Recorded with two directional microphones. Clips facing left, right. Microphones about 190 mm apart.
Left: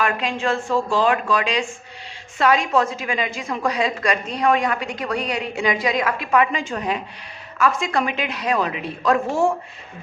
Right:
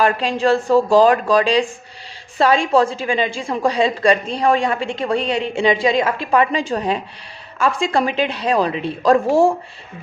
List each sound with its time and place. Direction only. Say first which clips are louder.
0.0 s a woman's voice: right 5 dB; 35° right (ahead or behind)